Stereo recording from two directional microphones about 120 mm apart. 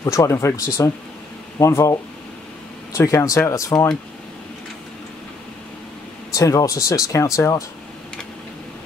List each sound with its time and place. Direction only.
0.0 s speech: 25° left (ahead or behind)
6.3 s speech: 25° left (ahead or behind)